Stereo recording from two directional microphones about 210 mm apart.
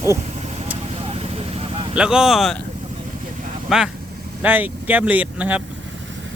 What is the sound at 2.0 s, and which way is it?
Speech, 5° right (ahead or behind).